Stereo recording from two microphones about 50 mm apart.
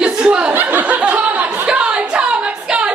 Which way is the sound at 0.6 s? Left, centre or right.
Right.